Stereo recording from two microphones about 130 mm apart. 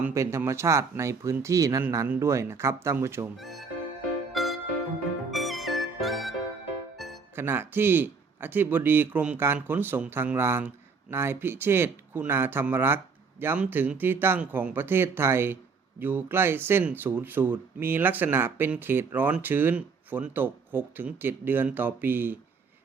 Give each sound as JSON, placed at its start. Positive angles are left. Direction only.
{"t": 0.0, "sound": "speech", "side_deg": -20}
{"t": 3.3, "sound": "speech", "side_deg": 0}
{"t": 4.4, "sound": "music", "side_deg": 0}
{"t": 7.3, "sound": "speech", "side_deg": -15}